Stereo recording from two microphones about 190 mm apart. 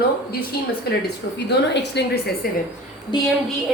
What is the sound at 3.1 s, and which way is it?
Speech, 25° left (ahead or behind).